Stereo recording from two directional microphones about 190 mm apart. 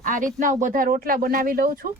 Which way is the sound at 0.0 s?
45° right (ahead or behind).